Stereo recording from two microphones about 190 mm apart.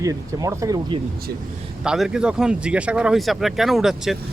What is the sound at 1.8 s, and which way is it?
Speech, 5° right (ahead or behind).